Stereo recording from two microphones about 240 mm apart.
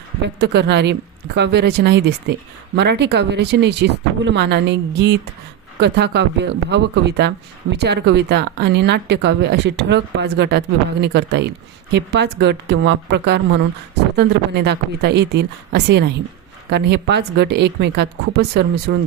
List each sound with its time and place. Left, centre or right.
0.2 s speech: right